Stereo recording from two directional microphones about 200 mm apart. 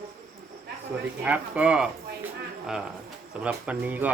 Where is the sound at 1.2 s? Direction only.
5° right (ahead or behind).